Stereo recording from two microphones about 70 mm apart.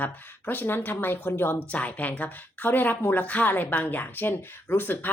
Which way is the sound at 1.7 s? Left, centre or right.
Left.